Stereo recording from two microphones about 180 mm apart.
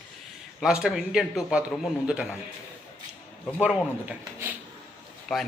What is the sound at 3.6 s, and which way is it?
Speech, 5° right (ahead or behind).